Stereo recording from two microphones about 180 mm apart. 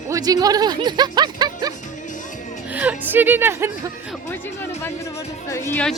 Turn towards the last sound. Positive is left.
turn(degrees=15)  # may be behind; listen again after turning